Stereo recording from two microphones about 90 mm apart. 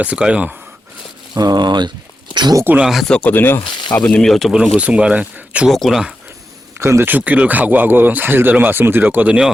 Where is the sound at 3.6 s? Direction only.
65° left (ahead or behind).